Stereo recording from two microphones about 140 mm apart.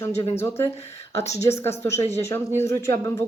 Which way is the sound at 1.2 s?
50° left (ahead or behind).